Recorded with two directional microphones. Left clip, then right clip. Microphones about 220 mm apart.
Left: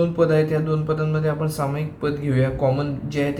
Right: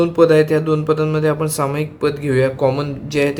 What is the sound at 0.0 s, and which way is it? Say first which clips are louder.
Speech: right 7 dB; 45° right (ahead or behind).